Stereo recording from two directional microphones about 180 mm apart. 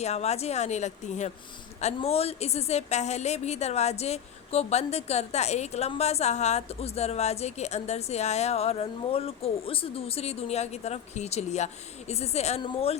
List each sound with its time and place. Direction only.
0.0 s a woman's voice: 35° left (ahead or behind)